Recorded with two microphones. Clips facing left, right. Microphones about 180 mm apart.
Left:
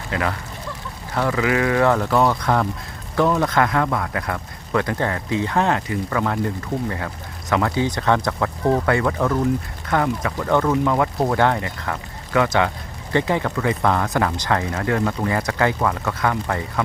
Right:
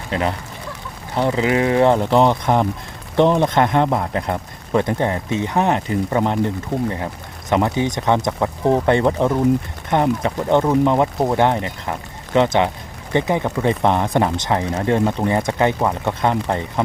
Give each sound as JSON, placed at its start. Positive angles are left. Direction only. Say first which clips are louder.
{"t": 0.1, "sound": "speech", "louder": "right 3 dB", "side_deg": -25}
{"t": 7.5, "sound": "speech", "louder": "right 2 dB", "side_deg": -20}